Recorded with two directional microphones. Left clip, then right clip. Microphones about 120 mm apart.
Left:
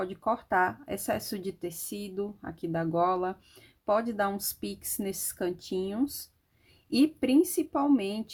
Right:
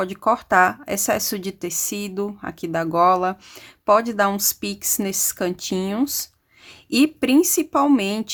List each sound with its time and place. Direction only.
0.0 s speech: 40° right (ahead or behind)